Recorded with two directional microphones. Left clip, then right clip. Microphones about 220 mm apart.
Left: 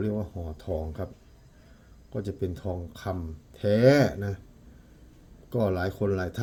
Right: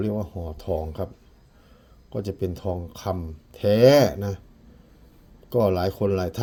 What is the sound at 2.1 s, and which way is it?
Speech, 30° right (ahead or behind).